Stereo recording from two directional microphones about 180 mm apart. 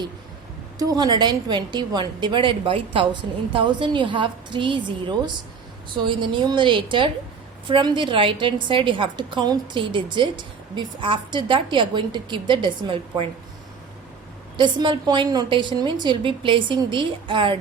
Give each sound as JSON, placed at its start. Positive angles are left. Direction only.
{"t": 0.8, "sound": "a woman's voice", "side_deg": -20}
{"t": 14.5, "sound": "a woman's voice", "side_deg": -25}